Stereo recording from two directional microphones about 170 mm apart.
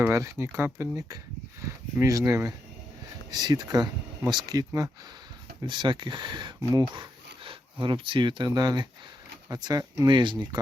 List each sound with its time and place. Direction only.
0.0 s speech: 15° right (ahead or behind)